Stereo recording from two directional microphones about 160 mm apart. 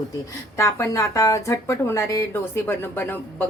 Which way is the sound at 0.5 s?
20° left (ahead or behind).